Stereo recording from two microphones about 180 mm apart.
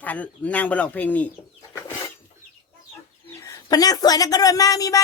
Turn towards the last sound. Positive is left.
turn(degrees=20)  # may be behind; listen again after turning